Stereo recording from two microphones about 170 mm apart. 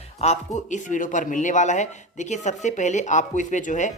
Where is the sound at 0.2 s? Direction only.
40° left (ahead or behind).